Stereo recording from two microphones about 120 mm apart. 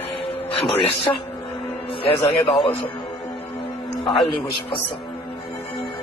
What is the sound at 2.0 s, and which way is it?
Speech, 50° left (ahead or behind).